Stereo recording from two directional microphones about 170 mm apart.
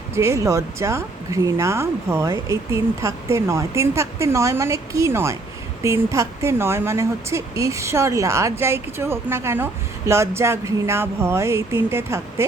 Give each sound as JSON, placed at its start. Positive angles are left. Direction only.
{"t": 0.1, "sound": "speech", "side_deg": -15}